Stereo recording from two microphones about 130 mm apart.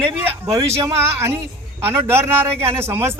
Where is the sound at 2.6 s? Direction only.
20° right (ahead or behind).